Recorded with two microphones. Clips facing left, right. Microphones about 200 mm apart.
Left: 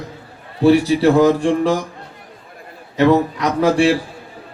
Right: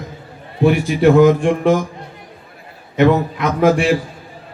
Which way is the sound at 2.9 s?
35° left (ahead or behind).